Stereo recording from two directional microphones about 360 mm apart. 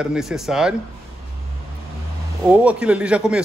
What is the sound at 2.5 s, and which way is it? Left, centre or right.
Speech, centre.